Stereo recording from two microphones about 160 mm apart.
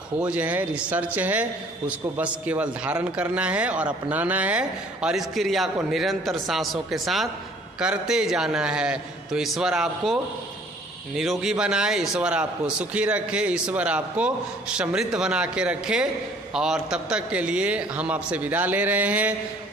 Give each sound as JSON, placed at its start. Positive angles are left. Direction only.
{"t": 0.2, "sound": "a man's voice", "side_deg": -10}